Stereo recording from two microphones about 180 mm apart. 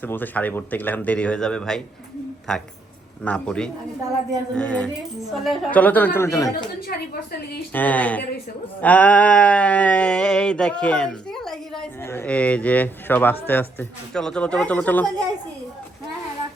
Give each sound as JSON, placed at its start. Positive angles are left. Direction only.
{"t": 0.0, "sound": "speech", "side_deg": 10}
{"t": 2.5, "sound": "a sound", "side_deg": 5}
{"t": 5.3, "sound": "speech", "side_deg": 0}
{"t": 6.8, "sound": "a woman's voice", "side_deg": 60}
{"t": 7.7, "sound": "speech", "side_deg": 10}
{"t": 8.8, "sound": "a sound", "side_deg": 10}
{"t": 12.0, "sound": "speech", "side_deg": 10}